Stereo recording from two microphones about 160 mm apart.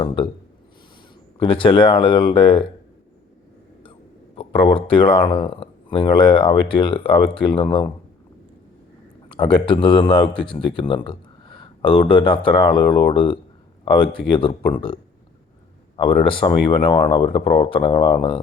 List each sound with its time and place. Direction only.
1.4 s speech: 35° left (ahead or behind)
4.4 s speech: 35° left (ahead or behind)
9.3 s speech: 35° left (ahead or behind)
16.0 s speech: 35° left (ahead or behind)